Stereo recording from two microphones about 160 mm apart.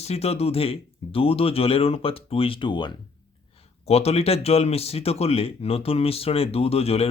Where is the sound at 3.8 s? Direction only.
40° left (ahead or behind).